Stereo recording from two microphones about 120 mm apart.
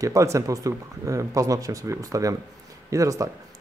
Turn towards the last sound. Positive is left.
turn(degrees=-25)  # may be behind; listen again after turning